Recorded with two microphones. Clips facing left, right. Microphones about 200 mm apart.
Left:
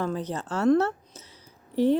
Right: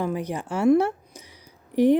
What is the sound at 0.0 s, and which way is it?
Speech, 10° right (ahead or behind).